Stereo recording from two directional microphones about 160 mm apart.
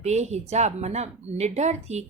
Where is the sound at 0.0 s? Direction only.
45° right (ahead or behind).